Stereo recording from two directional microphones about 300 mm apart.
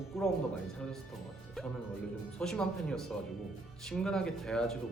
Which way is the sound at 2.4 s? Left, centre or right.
Centre.